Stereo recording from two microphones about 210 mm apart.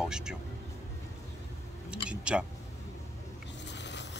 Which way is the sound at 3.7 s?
55° left (ahead or behind).